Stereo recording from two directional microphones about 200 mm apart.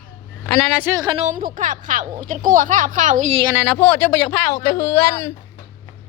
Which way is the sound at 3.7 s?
10° left (ahead or behind).